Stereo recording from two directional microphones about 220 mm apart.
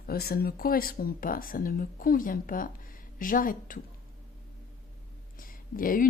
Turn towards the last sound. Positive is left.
turn(degrees=40)  # may be behind; listen again after turning